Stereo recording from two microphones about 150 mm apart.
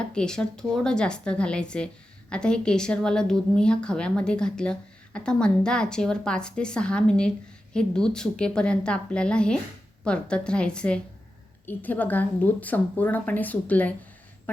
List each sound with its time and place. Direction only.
0.1 s a woman's voice: 5° left (ahead or behind)